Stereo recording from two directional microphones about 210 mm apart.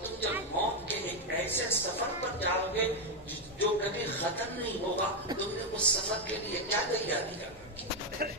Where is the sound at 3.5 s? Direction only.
10° left (ahead or behind).